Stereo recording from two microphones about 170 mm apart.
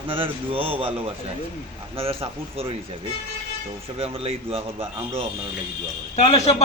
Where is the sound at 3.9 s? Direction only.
35° right (ahead or behind).